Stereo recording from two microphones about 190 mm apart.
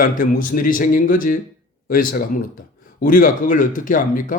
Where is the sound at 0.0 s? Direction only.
45° left (ahead or behind).